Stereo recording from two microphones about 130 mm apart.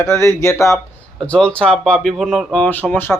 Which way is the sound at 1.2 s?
10° left (ahead or behind).